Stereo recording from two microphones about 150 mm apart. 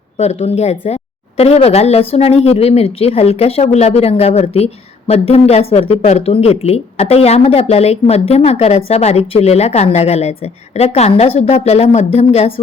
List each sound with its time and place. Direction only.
0.2 s a woman's voice: 45° left (ahead or behind)